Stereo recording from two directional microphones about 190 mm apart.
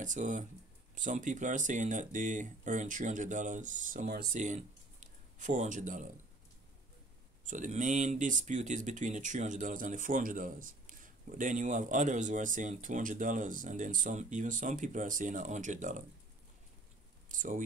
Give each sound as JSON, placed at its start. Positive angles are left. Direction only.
{"t": 0.0, "sound": "speech", "side_deg": -40}
{"t": 4.3, "sound": "speech", "side_deg": -40}
{"t": 7.4, "sound": "speech", "side_deg": -40}
{"t": 17.3, "sound": "a sound", "side_deg": -45}